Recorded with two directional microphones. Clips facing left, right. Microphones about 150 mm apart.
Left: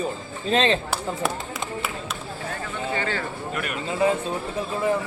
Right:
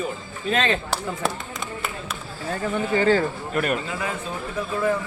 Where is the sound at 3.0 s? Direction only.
35° right (ahead or behind).